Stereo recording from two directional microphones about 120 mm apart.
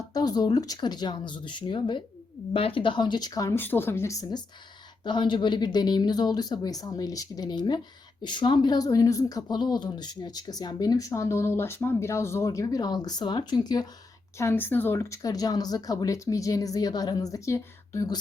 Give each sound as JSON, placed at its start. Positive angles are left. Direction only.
{"t": 0.1, "sound": "speech", "side_deg": 35}
{"t": 14.3, "sound": "speech", "side_deg": 20}